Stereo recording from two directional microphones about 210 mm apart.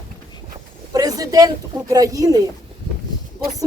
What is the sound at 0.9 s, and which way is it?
Speech, 15° right (ahead or behind).